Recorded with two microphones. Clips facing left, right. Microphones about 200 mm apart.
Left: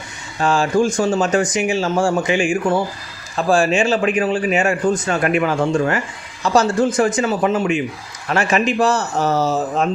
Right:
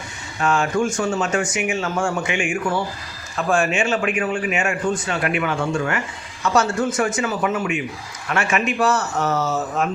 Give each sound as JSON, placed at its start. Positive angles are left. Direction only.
{"t": 0.3, "sound": "a man's voice", "side_deg": 30}